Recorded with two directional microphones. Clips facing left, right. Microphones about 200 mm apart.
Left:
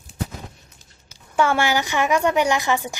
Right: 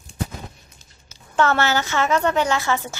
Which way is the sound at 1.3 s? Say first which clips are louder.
Even; 10° left (ahead or behind).